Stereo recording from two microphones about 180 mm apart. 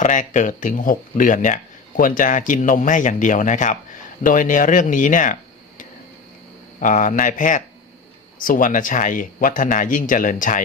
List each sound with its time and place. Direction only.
0.0 s speech: 45° left (ahead or behind)